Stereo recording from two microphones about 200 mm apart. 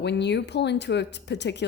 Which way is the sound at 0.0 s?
60° left (ahead or behind).